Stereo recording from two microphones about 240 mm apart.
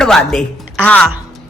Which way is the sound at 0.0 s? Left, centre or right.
Centre.